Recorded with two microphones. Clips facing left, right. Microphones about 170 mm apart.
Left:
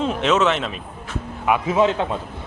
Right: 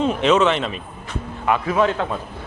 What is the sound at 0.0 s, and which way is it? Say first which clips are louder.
Speech: right 2 dB; centre (ahead or behind).